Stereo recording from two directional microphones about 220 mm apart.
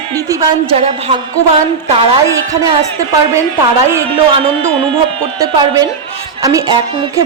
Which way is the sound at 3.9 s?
10° right (ahead or behind).